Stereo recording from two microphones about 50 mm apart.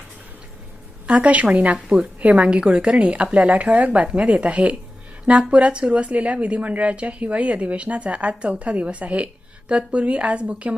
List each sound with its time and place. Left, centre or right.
1.0 s a woman's voice: right